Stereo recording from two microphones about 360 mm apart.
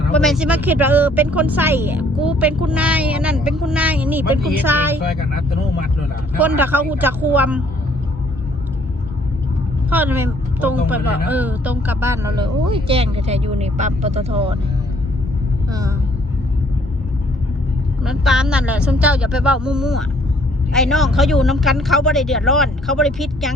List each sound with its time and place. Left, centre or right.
0.1 s speech: centre
6.4 s speech: centre
9.9 s speech: centre
18.0 s speech: centre